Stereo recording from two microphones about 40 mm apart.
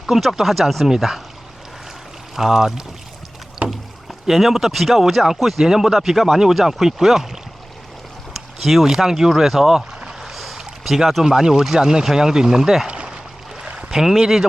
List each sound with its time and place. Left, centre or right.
0.1 s speech: centre
2.3 s speech: centre
3.6 s rowboat: right
4.3 s speech: centre
8.6 s speech: centre
13.7 s a sound: right
14.0 s speech: centre